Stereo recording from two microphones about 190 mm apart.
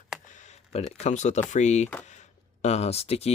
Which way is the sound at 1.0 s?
40° left (ahead or behind).